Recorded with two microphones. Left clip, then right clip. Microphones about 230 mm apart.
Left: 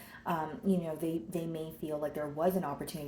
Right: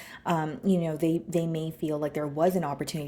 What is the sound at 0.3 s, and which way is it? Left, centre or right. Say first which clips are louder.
A woman's voice: right 6 dB; right.